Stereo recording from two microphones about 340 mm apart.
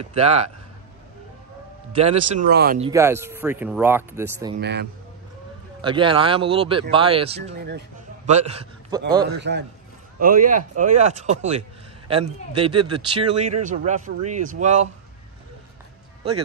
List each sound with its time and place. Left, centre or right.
0.0 s speech: centre
2.0 s speech: centre
2.9 s speech: centre
4.6 s speech: right
5.8 s speech: centre
7.5 s speech: right
8.3 s a man's voice: centre
9.2 s speech: right